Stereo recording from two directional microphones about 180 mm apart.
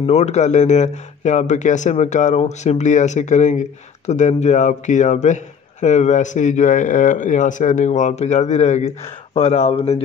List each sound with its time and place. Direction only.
0.0 s speech: 40° left (ahead or behind)